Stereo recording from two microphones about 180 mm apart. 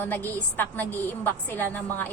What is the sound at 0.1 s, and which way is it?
A woman's voice, 10° left (ahead or behind).